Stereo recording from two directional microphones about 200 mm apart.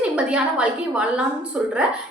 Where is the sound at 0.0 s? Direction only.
5° right (ahead or behind).